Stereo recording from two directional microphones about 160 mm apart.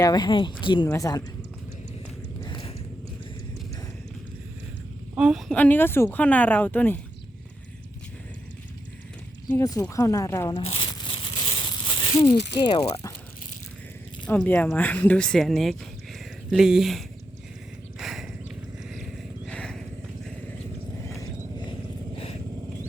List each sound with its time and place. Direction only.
0.0 s speech: 25° left (ahead or behind)
2.4 s mechanisms: 30° left (ahead or behind)
5.1 s speech: 5° right (ahead or behind)
5.5 s speech: 10° left (ahead or behind)
9.5 s speech: 20° left (ahead or behind)
10.5 s a sound: 35° left (ahead or behind)
12.5 s speech: 30° left (ahead or behind)
14.3 s speech: 10° left (ahead or behind)
16.1 s a sound: centre (ahead or behind)
19.5 s vehicle: 5° left (ahead or behind)